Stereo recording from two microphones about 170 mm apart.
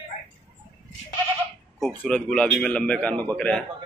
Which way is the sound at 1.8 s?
5° left (ahead or behind).